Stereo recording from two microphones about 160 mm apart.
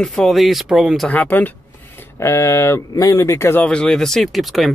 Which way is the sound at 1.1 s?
10° left (ahead or behind).